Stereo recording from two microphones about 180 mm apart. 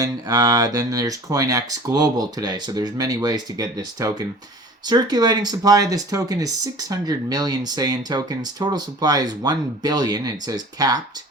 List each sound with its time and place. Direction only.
0.0 s speech: 20° right (ahead or behind)